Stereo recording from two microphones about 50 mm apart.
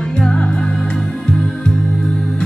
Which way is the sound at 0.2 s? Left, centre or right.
Centre.